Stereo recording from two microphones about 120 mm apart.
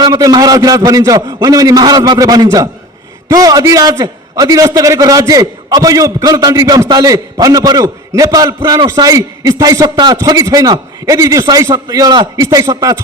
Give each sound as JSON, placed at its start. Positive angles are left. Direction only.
{"t": 0.0, "sound": "a man's voice", "side_deg": -30}